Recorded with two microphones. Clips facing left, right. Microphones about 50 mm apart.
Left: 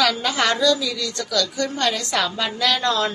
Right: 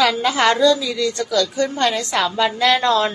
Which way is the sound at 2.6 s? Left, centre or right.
Right.